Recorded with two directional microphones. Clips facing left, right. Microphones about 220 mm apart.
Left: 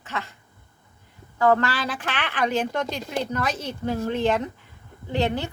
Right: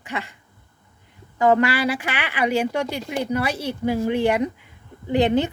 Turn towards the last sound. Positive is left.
turn(degrees=-15)  # may be behind; listen again after turning